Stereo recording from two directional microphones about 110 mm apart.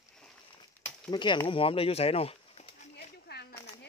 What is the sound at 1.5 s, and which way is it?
Speech, 55° left (ahead or behind).